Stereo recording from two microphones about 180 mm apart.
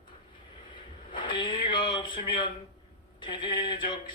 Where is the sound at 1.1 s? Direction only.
25° left (ahead or behind).